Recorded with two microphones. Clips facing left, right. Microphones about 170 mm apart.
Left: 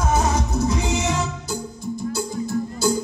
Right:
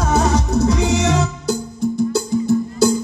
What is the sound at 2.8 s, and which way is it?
Music, 75° right (ahead or behind).